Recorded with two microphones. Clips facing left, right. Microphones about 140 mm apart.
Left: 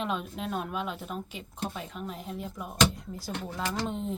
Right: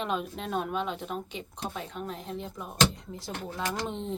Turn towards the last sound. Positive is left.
turn(degrees=0)  # may be behind; listen again after turning